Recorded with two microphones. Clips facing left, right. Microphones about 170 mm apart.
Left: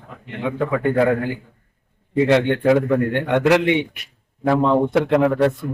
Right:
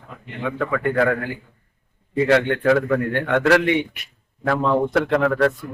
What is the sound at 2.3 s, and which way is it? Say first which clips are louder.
A man's voice: left 1 dB; 20° left (ahead or behind).